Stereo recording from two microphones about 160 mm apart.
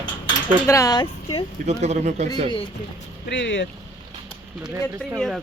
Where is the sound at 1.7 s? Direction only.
45° right (ahead or behind).